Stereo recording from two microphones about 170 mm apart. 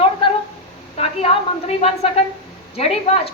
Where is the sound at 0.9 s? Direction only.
35° left (ahead or behind).